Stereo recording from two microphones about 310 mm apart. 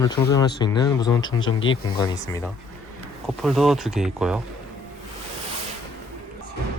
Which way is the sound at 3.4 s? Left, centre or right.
Centre.